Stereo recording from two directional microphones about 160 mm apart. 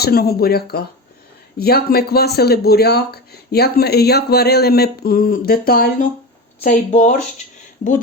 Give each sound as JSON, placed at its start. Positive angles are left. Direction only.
{"t": 0.0, "sound": "speech", "side_deg": 75}
{"t": 6.6, "sound": "speech", "side_deg": 45}